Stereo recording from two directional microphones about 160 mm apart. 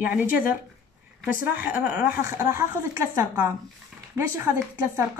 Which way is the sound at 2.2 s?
20° right (ahead or behind).